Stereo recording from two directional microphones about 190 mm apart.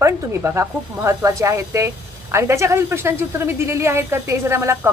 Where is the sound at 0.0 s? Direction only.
15° right (ahead or behind).